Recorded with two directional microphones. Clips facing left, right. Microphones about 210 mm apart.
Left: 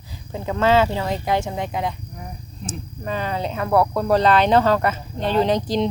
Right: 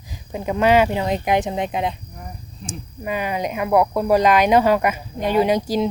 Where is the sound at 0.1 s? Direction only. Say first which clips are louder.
Right 2 dB; 15° right (ahead or behind).